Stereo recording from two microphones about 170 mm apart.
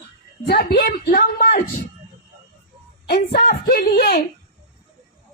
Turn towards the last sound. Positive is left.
turn(degrees=60)  # may be behind; listen again after turning